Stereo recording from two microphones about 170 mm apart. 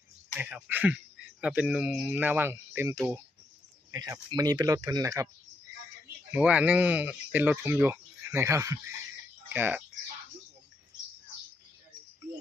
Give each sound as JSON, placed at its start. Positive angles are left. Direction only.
{"t": 0.3, "sound": "speech", "side_deg": -10}
{"t": 6.3, "sound": "speech", "side_deg": -10}